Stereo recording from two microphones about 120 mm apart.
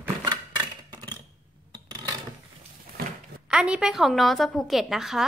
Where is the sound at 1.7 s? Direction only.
35° right (ahead or behind).